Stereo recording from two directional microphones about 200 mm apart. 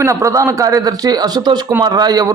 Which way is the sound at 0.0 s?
15° right (ahead or behind).